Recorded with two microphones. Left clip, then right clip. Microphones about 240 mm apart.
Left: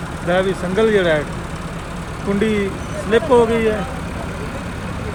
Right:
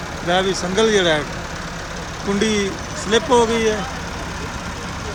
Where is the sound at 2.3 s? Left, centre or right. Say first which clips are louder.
Even; right.